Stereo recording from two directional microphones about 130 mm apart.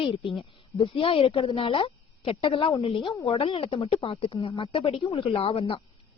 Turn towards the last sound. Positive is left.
turn(degrees=45)  # may be behind; listen again after turning